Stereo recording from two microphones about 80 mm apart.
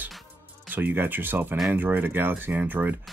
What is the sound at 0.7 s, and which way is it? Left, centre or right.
Speech, right.